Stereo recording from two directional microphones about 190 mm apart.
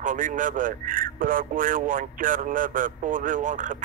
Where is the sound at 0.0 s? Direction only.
40° right (ahead or behind).